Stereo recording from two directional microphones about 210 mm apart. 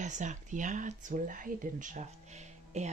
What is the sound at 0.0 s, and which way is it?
A woman's voice, 35° right (ahead or behind).